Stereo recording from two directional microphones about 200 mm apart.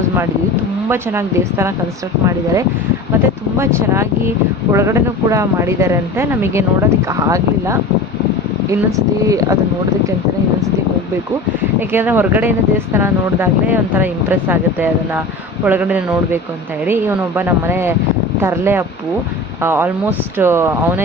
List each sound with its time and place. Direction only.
0.9 s speech: 15° right (ahead or behind)
9.2 s speech: 15° right (ahead or behind)
11.8 s speech: 10° right (ahead or behind)